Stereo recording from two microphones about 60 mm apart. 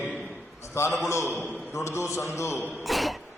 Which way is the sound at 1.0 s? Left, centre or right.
Left.